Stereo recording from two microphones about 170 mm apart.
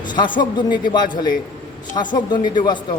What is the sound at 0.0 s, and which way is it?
A man's voice, 25° left (ahead or behind).